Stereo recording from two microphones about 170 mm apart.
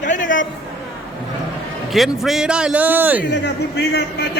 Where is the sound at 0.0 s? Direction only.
50° left (ahead or behind).